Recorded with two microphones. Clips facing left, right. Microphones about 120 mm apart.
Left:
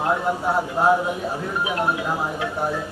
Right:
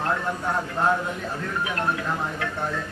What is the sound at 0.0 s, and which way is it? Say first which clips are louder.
Speech: left 4 dB; 20° left (ahead or behind).